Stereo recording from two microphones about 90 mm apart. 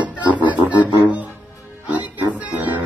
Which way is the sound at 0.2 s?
60° left (ahead or behind).